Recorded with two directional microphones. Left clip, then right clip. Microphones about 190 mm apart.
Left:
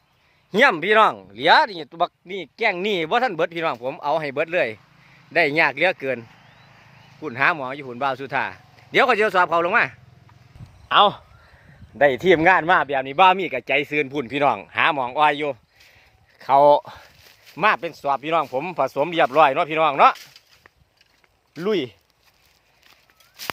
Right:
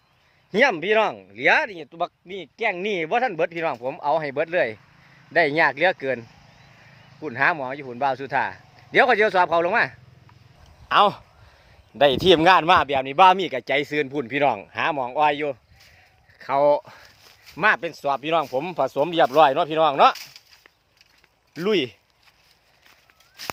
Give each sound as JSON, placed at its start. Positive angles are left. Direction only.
{"t": 0.5, "sound": "speech", "side_deg": 10}
{"t": 1.9, "sound": "speech", "side_deg": 25}
{"t": 17.6, "sound": "speech", "side_deg": 0}
{"t": 21.6, "sound": "speech", "side_deg": -10}
{"t": 23.4, "sound": "a sound", "side_deg": 45}